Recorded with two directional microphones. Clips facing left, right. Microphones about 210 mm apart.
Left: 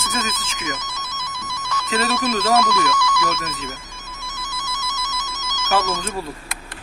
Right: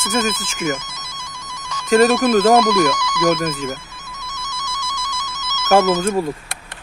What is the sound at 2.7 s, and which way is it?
Speech, 15° right (ahead or behind).